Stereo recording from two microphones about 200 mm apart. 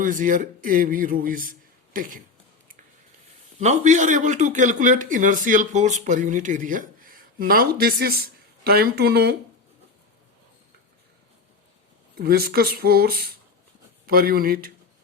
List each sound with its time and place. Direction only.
0.0 s speech: 40° right (ahead or behind)
3.6 s speech: 35° right (ahead or behind); by 9.3 s 55° right (ahead or behind)
12.1 s speech: 50° right (ahead or behind)